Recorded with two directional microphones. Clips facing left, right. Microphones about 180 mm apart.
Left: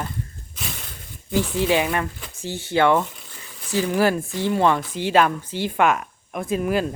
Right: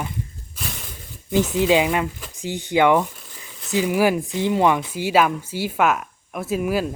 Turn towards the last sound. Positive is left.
turn(degrees=-5)  # may be behind; listen again after turning